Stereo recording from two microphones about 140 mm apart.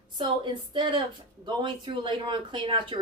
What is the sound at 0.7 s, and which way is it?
Speech, 35° right (ahead or behind).